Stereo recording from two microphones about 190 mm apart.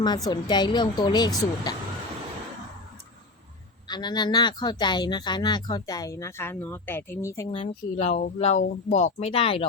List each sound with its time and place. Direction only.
0.0 s speech: 20° left (ahead or behind)
3.8 s speech: 20° left (ahead or behind)
7.5 s speech: 30° left (ahead or behind)